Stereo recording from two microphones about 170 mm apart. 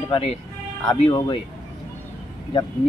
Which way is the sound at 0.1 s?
35° left (ahead or behind).